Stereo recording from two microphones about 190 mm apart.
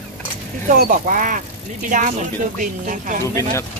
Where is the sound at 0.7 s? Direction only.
45° right (ahead or behind).